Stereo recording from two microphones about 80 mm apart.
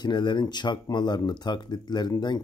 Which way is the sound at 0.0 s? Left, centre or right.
Left.